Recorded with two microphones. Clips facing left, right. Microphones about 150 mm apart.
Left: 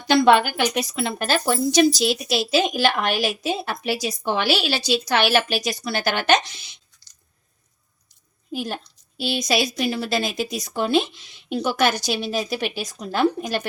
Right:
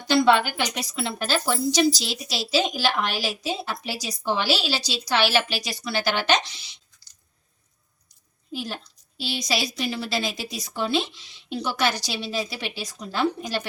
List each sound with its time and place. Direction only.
0.1 s a woman's voice: 55° left (ahead or behind)
8.5 s a woman's voice: 55° left (ahead or behind)